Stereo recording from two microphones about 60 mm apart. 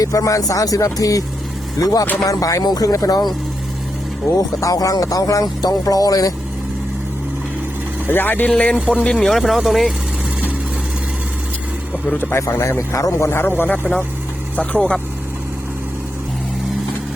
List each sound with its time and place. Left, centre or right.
0.0 s speech: left
1.8 s speech: left
2.2 s speech: left
4.4 s speech: left
8.0 s speech: left
8.4 s speech: centre
9.1 s speech: centre
12.1 s speech: left
12.4 s speech: left
13.1 s speech: left
14.5 s speech: left
14.8 s speech: centre